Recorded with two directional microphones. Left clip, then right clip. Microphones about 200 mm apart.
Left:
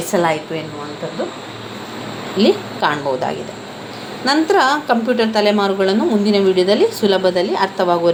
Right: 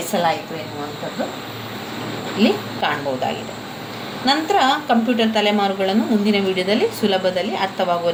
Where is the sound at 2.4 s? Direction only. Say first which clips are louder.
Left 4 dB; 35° left (ahead or behind).